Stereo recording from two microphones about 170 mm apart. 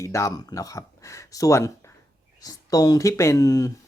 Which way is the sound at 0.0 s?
20° left (ahead or behind).